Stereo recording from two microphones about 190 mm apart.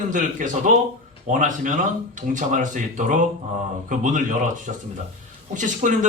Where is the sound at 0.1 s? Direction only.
45° right (ahead or behind).